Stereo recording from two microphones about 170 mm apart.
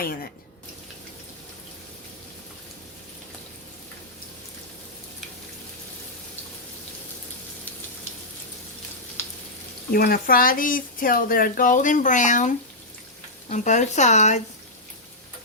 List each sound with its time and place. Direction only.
0.0 s speech: 60° left (ahead or behind)
9.9 s speech: 60° left (ahead or behind); by 14.4 s 45° left (ahead or behind)